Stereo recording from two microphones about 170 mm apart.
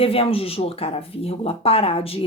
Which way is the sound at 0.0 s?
35° left (ahead or behind).